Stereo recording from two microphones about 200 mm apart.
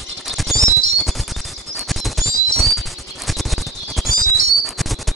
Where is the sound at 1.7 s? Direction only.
Centre (ahead or behind).